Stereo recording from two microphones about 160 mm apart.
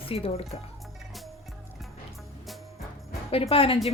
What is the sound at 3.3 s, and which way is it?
Speech, 35° left (ahead or behind).